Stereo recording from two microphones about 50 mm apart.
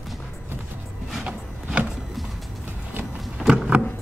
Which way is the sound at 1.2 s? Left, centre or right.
Right.